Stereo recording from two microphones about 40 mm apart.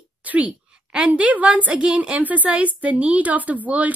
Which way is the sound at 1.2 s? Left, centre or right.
Right.